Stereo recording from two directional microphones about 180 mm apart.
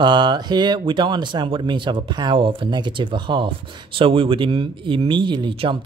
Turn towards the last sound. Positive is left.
turn(degrees=-30)  # may be behind; listen again after turning